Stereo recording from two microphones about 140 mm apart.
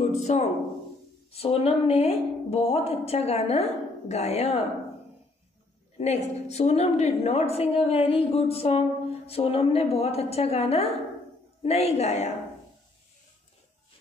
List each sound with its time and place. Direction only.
0.0 s a sound: 55° left (ahead or behind)
1.3 s a woman's voice: 45° left (ahead or behind)
5.9 s a woman's voice: 50° left (ahead or behind)